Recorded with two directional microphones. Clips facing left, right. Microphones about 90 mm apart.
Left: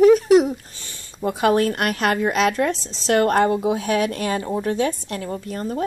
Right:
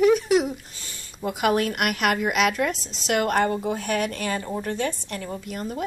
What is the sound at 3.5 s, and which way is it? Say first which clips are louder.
Speech: left 5 dB; 65° left (ahead or behind).